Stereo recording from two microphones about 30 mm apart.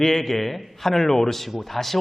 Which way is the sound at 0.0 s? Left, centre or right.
Centre.